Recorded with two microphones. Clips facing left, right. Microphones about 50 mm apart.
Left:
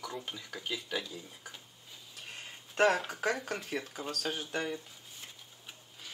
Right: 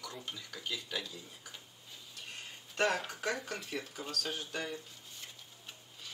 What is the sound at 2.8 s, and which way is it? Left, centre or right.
Speech, centre.